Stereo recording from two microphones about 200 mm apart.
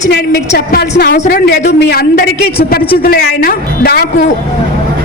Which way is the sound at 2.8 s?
25° left (ahead or behind).